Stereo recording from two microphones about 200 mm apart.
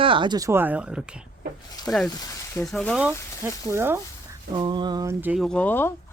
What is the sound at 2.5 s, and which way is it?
Speech, 5° left (ahead or behind).